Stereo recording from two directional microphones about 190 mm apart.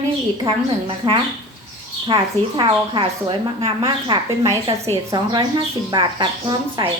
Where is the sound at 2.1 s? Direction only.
25° right (ahead or behind).